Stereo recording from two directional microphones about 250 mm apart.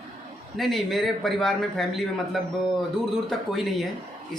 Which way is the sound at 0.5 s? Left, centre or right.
Centre.